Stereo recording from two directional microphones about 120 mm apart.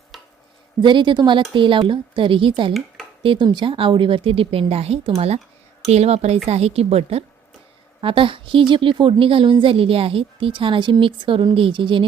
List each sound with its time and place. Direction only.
0.1 s stir: centre (ahead or behind)
0.8 s a woman's voice: 40° right (ahead or behind); by 7.3 s 55° right (ahead or behind)
8.0 s a woman's voice: 45° right (ahead or behind)